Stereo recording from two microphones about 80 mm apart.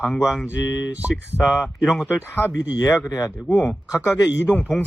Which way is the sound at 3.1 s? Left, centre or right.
Left.